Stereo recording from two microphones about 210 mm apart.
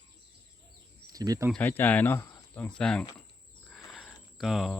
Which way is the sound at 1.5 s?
10° left (ahead or behind).